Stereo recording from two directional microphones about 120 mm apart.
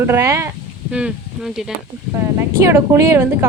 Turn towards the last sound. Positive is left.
turn(degrees=-20)  # may be behind; listen again after turning